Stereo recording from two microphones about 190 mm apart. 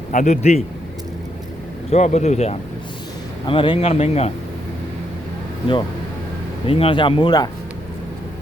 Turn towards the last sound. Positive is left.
turn(degrees=20)  # may be behind; listen again after turning